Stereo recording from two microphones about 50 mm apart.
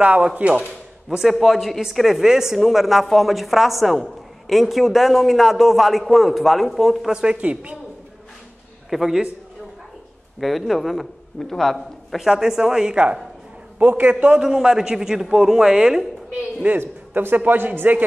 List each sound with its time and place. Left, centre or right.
0.0 s a man's voice: right
1.0 s a man's voice: centre
7.1 s speech: centre
7.3 s a man's voice: right
8.9 s speech: centre
10.4 s a man's voice: centre
12.2 s speech: centre
12.9 s a man's voice: right
14.4 s speech: centre
16.3 s a man's voice: right
16.7 s a man's voice: right